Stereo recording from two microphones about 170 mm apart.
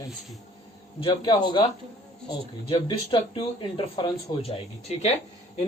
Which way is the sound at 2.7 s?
30° left (ahead or behind).